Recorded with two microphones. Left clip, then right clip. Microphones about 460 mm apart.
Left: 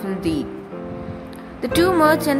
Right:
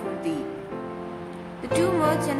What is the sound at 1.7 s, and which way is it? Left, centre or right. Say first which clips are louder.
Speech: left 6 dB; centre.